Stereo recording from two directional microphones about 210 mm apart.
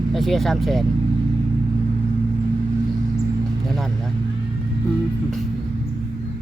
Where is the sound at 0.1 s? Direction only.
Centre (ahead or behind).